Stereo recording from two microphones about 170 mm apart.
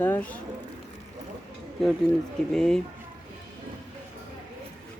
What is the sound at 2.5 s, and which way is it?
Speech, 5° left (ahead or behind).